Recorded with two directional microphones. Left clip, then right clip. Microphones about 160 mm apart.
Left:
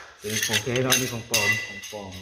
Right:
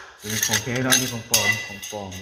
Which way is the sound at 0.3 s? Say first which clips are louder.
Right 1 dB; 35° right (ahead or behind).